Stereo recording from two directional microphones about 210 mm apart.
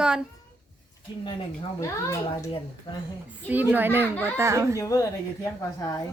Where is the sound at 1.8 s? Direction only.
15° left (ahead or behind).